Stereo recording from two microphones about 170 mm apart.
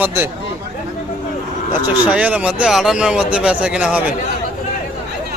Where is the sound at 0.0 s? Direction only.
15° right (ahead or behind).